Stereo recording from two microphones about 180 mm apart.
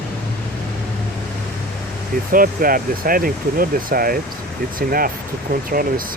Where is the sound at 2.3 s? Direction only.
50° right (ahead or behind).